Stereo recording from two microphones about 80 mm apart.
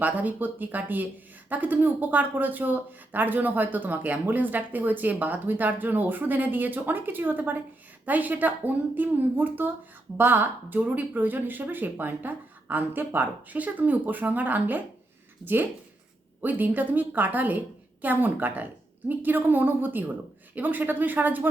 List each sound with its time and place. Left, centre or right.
0.0 s speech: right
16.4 s speech: right